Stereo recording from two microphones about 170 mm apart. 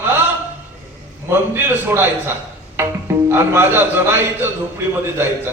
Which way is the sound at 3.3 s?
15° right (ahead or behind).